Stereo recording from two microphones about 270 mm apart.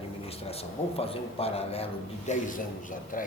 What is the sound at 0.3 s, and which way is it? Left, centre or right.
A man's voice, left.